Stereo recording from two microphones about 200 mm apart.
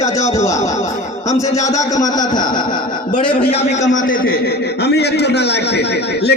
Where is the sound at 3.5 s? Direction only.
35° left (ahead or behind); by 6.4 s 55° left (ahead or behind).